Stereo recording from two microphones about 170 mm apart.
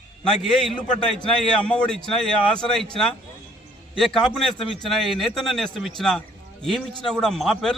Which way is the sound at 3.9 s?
Centre (ahead or behind).